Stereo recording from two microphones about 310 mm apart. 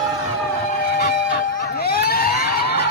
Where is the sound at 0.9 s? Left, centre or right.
Left.